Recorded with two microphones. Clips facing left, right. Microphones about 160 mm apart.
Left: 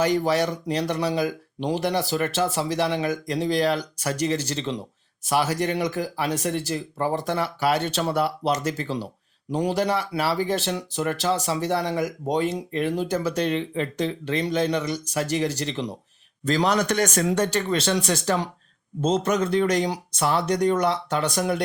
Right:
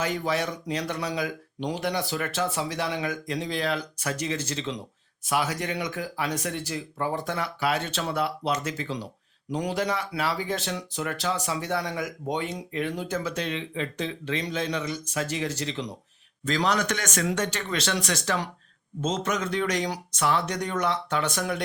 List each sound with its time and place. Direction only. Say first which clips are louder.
0.0 s speech: left 6 dB; 35° left (ahead or behind)